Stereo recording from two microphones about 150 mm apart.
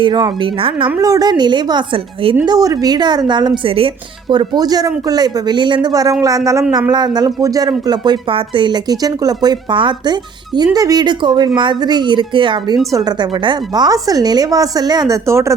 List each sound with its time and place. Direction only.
0.0 s a woman's voice: 30° right (ahead or behind)
0.9 s speech: 25° right (ahead or behind)